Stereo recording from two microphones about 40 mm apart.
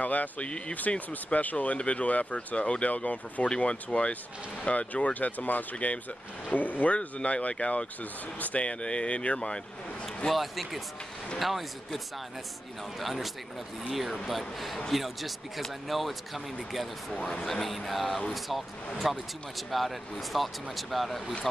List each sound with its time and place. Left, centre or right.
0.0 s speech: left
7.0 s speech: left
8.6 s speech: left
10.0 s a man's voice: centre
13.0 s speech: centre
17.1 s speech: left
17.5 s speech: centre